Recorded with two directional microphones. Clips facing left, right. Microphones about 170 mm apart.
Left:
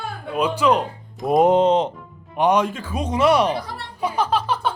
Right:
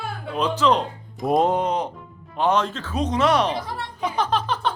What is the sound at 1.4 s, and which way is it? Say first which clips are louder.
Speech: left 7 dB; 20° left (ahead or behind).